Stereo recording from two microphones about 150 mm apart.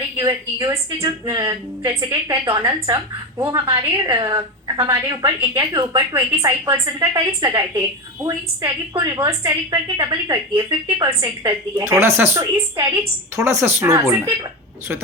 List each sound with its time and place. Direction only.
0.2 s a woman's voice: 25° right (ahead or behind)